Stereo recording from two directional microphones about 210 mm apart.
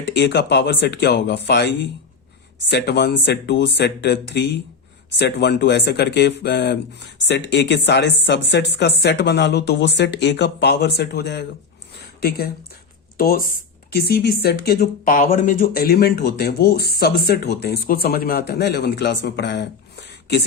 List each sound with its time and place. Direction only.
0.0 s speech: 55° left (ahead or behind)
13.1 s speech: 45° left (ahead or behind)